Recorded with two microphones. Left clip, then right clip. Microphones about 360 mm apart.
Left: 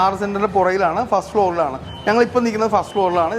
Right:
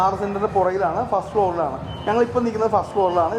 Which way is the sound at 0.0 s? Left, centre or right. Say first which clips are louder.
Left 3 dB; left.